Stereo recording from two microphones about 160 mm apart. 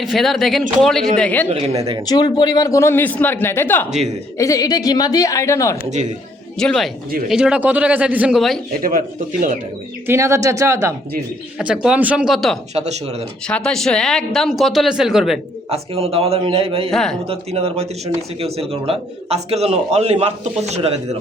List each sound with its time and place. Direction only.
0.0 s speech: centre (ahead or behind)
1.5 s a man's voice: 40° right (ahead or behind)
2.0 s a man's voice: 25° left (ahead or behind)
6.6 s a man's voice: 5° left (ahead or behind)
8.8 s speech: 60° right (ahead or behind)
10.1 s a man's voice: 15° right (ahead or behind)
11.5 s speech: 5° right (ahead or behind)
12.7 s a man's voice: 40° right (ahead or behind)
13.5 s speech: 5° left (ahead or behind)
15.7 s a man's voice: 40° right (ahead or behind)
16.9 s speech: centre (ahead or behind)
17.2 s a man's voice: 40° right (ahead or behind)